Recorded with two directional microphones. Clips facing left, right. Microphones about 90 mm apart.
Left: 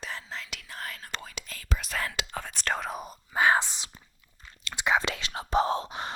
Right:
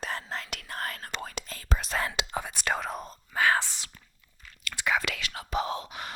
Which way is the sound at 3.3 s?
20° left (ahead or behind).